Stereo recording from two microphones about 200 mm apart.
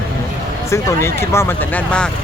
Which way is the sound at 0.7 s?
15° left (ahead or behind).